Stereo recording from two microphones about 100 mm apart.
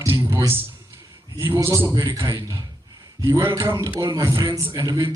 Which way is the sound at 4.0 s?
40° right (ahead or behind).